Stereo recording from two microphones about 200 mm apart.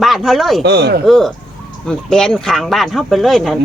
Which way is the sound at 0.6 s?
55° right (ahead or behind).